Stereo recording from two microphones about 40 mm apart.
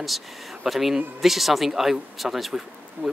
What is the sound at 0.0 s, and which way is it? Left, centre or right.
Speech, centre.